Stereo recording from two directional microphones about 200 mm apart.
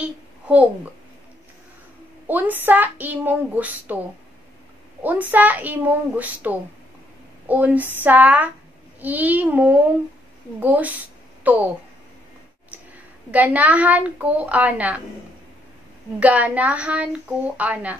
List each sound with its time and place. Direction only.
2.2 s speech: 10° right (ahead or behind)
5.0 s speech: 10° right (ahead or behind)
13.3 s speech: 5° right (ahead or behind)
16.2 s speech: 5° right (ahead or behind)